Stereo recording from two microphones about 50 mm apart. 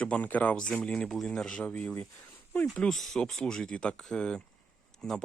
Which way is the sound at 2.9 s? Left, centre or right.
Centre.